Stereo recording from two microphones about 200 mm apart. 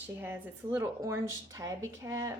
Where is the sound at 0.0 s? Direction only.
10° right (ahead or behind).